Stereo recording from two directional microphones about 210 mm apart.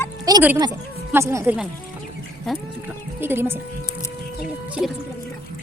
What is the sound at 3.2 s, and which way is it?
Speech, 10° right (ahead or behind).